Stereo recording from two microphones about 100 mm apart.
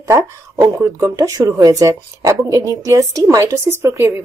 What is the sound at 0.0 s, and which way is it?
A woman's voice, 30° right (ahead or behind).